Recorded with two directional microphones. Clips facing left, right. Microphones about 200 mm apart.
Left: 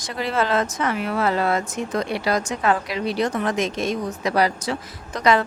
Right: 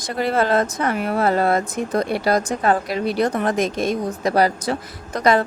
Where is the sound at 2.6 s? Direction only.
35° right (ahead or behind).